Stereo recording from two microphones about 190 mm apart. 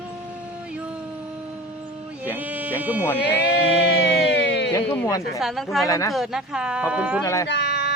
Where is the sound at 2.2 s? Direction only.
10° right (ahead or behind).